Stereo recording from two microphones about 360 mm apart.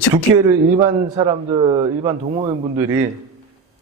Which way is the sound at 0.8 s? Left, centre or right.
Centre.